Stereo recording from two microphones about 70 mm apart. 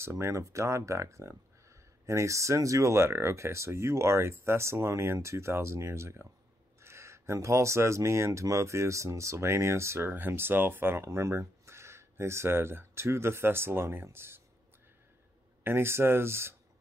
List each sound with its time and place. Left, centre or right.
0.0 s speech: right
15.6 s speech: right